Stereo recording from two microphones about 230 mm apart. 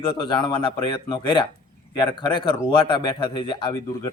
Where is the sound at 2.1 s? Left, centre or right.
Left.